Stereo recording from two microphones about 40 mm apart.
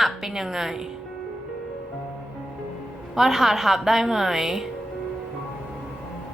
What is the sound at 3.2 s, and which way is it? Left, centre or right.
A woman's voice, centre.